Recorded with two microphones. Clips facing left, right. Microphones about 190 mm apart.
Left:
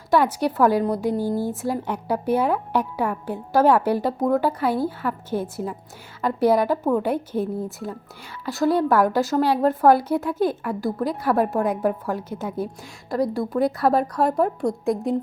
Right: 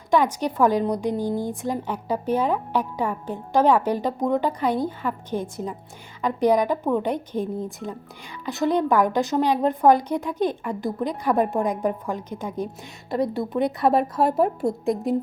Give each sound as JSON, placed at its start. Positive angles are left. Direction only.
{"t": 0.1, "sound": "a woman's voice", "side_deg": 5}
{"t": 6.2, "sound": "a woman's voice", "side_deg": -15}
{"t": 6.8, "sound": "a woman's voice", "side_deg": 5}
{"t": 8.6, "sound": "a woman's voice", "side_deg": -15}
{"t": 9.8, "sound": "a woman's voice", "side_deg": 5}